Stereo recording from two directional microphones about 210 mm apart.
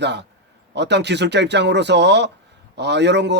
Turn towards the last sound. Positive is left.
turn(degrees=-55)  # may be behind; listen again after turning